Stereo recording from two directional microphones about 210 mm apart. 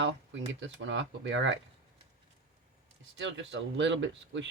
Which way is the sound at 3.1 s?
60° right (ahead or behind).